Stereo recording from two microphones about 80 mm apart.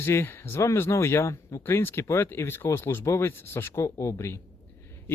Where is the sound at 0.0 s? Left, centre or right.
Left.